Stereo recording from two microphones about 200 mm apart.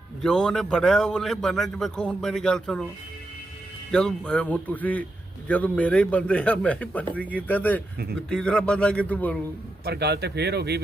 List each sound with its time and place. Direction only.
0.2 s a man's voice: 5° left (ahead or behind)
3.9 s a man's voice: 5° left (ahead or behind)
9.8 s speech: 55° right (ahead or behind)